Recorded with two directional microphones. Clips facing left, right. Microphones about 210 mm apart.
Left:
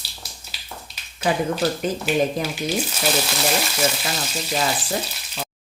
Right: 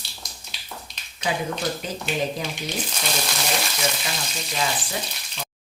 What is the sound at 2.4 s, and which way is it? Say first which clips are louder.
Speech: left 5 dB; 5° left (ahead or behind).